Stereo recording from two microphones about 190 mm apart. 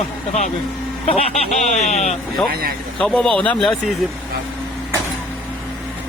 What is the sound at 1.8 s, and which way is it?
Speech, 35° left (ahead or behind).